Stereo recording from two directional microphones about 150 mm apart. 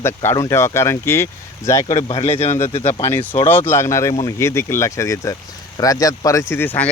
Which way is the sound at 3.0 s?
20° left (ahead or behind).